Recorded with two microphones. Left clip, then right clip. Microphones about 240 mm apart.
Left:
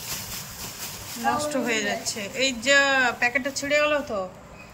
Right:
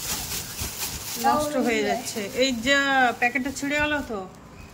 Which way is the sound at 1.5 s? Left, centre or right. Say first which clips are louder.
Right 2 dB; centre.